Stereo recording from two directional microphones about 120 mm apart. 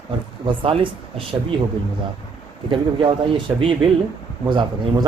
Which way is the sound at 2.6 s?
45° right (ahead or behind).